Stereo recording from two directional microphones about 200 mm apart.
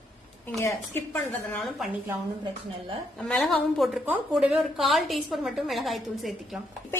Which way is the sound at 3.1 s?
5° left (ahead or behind).